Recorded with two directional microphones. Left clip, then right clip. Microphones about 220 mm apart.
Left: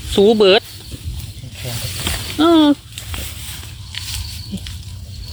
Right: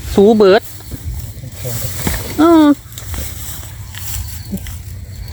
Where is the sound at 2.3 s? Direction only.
25° right (ahead or behind).